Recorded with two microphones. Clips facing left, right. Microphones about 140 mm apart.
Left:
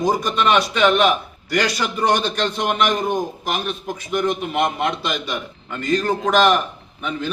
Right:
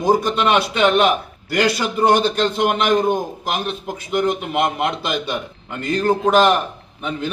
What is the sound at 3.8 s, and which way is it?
A man's voice, 15° right (ahead or behind).